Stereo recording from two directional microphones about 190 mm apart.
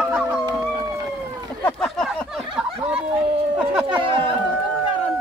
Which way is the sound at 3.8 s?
25° right (ahead or behind).